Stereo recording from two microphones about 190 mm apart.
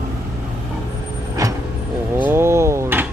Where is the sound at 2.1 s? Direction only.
10° right (ahead or behind).